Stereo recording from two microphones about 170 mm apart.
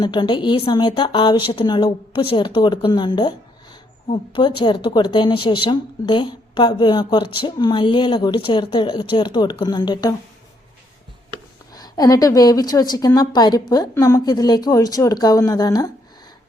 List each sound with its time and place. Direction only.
0.0 s speech: 25° left (ahead or behind)
11.7 s speech: 20° left (ahead or behind)